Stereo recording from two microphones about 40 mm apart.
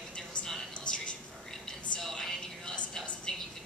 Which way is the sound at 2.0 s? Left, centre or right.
Centre.